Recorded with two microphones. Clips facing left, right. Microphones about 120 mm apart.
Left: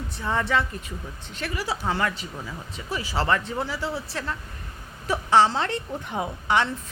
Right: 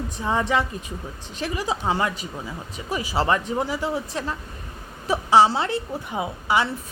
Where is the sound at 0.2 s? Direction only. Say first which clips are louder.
Right 2 dB; 15° right (ahead or behind).